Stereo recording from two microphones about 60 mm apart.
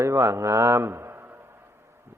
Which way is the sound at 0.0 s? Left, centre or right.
Right.